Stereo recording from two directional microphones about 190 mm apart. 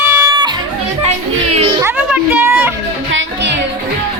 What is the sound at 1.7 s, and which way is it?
Music, 10° right (ahead or behind).